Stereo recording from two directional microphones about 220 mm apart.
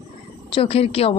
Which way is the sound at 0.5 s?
25° left (ahead or behind).